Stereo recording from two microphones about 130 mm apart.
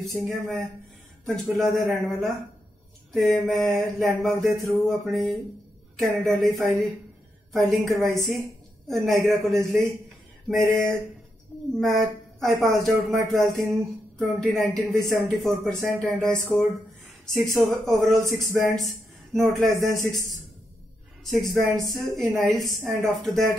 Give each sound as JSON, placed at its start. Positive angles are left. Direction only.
{"t": 0.1, "sound": "a woman's voice", "side_deg": 0}
{"t": 7.5, "sound": "a woman's voice", "side_deg": 0}
{"t": 12.4, "sound": "a woman's voice", "side_deg": 0}